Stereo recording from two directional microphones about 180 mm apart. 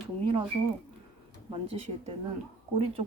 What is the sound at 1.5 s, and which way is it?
Speech, 30° right (ahead or behind).